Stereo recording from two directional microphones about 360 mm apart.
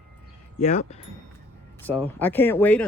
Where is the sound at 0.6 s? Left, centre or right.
Centre.